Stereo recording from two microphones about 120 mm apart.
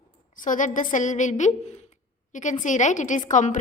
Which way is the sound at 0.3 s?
90° left.